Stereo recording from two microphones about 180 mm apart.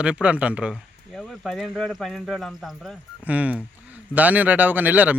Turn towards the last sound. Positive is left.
turn(degrees=-10)  # may be behind; listen again after turning